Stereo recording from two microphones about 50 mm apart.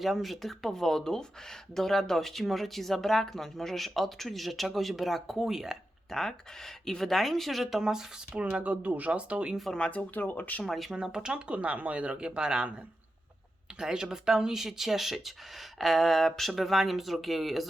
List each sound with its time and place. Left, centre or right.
0.0 s speech: centre
6.1 s speech: centre
8.4 s speech: right
9.7 s speech: left
10.6 s speech: centre
10.9 s speech: centre
13.7 s speech: centre